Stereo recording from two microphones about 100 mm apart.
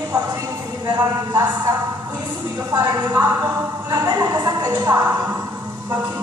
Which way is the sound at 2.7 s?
40° right (ahead or behind).